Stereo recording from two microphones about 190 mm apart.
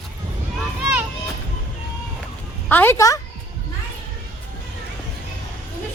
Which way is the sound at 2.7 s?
10° left (ahead or behind).